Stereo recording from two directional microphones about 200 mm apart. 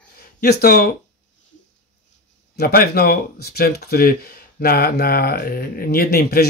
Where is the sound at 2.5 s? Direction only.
50° left (ahead or behind).